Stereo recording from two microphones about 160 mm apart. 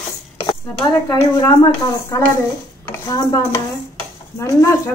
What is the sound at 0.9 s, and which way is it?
Speech, 20° left (ahead or behind).